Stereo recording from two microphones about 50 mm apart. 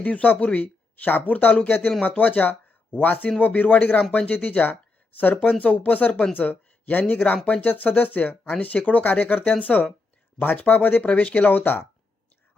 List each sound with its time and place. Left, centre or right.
0.0 s speech: left
5.3 s speech: left
6.5 s a sound: left
7.1 s speech: left